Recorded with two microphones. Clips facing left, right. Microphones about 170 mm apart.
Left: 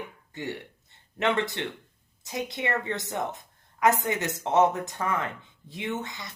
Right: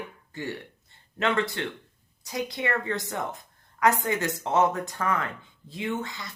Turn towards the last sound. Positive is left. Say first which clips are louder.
# right 2 dB
turn(degrees=20)  # may be behind; listen again after turning